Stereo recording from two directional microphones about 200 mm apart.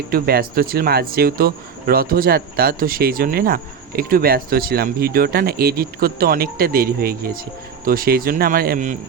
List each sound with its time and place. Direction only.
0.1 s speech: 50° right (ahead or behind)